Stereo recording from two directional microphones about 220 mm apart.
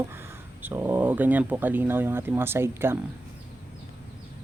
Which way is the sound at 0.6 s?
10° right (ahead or behind).